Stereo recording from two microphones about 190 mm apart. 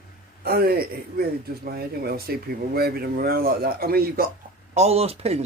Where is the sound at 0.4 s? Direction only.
55° right (ahead or behind).